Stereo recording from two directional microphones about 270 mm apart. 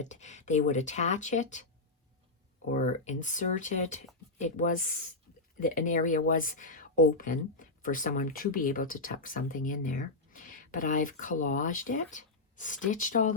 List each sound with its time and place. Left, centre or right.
0.0 s speech: left
2.7 s speech: left